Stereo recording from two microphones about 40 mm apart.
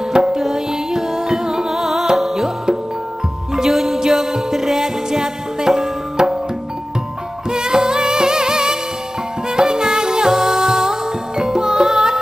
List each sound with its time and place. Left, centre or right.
0.1 s music: centre
7.5 s music: centre